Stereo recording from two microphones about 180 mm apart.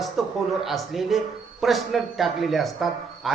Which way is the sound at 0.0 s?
Centre (ahead or behind).